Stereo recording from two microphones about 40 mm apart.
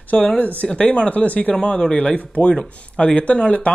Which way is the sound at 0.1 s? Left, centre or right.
Left.